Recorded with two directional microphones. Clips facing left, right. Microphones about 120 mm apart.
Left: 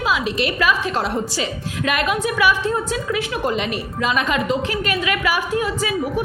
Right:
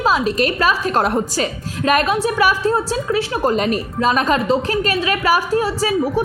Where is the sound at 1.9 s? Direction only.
40° right (ahead or behind).